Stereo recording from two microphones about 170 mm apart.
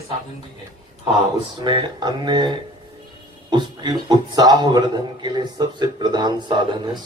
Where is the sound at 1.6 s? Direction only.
25° right (ahead or behind).